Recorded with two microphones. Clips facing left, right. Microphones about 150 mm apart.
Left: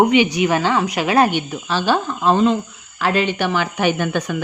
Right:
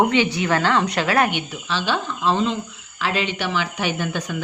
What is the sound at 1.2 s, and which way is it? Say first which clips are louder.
Speech: left 4 dB; 40° left (ahead or behind).